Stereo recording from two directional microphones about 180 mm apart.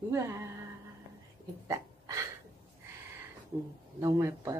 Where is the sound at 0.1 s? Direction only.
15° right (ahead or behind).